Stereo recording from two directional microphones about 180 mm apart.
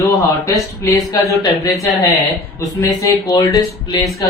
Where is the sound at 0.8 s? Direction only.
15° left (ahead or behind).